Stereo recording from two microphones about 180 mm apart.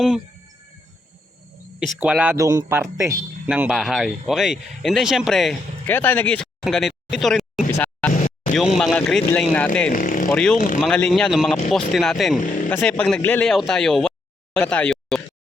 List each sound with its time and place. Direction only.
2.0 s speech: 5° right (ahead or behind)
8.1 s vehicle: 45° left (ahead or behind)
8.5 s speech: centre (ahead or behind)
9.9 s speech: 50° left (ahead or behind)
10.2 s speech: 5° left (ahead or behind)